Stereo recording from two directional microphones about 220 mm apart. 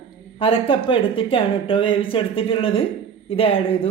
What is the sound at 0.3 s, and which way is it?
A woman's voice, 25° left (ahead or behind).